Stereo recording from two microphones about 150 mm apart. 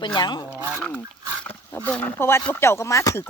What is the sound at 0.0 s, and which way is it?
Speech, 30° left (ahead or behind).